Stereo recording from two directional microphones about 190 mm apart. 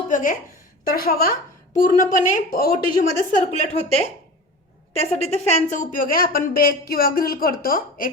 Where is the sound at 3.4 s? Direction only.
35° left (ahead or behind).